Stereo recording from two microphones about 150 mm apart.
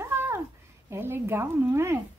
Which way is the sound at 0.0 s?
15° right (ahead or behind).